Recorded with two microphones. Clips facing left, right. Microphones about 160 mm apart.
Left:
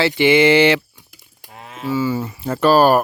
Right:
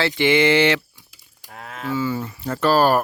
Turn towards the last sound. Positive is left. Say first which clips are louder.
# left 4 dB
turn(degrees=15)  # may be behind; listen again after turning